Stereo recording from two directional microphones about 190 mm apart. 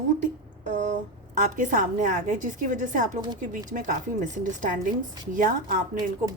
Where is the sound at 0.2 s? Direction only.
40° right (ahead or behind).